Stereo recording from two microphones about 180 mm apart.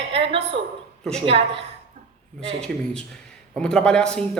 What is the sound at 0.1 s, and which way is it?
A woman's voice, 30° right (ahead or behind).